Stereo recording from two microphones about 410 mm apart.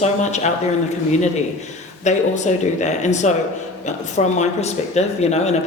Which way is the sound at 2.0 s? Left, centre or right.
Centre.